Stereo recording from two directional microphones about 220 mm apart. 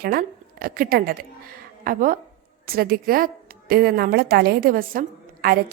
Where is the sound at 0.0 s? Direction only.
40° right (ahead or behind).